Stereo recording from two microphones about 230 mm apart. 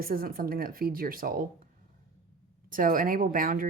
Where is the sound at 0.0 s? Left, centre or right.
Right.